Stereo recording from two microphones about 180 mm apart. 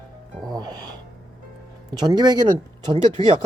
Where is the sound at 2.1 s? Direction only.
25° right (ahead or behind).